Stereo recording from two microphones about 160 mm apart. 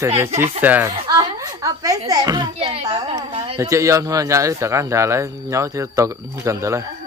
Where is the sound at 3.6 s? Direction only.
20° right (ahead or behind).